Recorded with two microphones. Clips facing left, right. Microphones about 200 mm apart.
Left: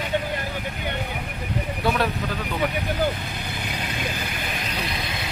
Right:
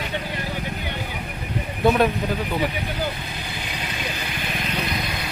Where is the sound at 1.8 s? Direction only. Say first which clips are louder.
Right 6 dB; 20° right (ahead or behind).